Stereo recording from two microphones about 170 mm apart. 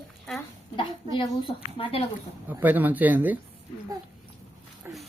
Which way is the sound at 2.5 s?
10° right (ahead or behind).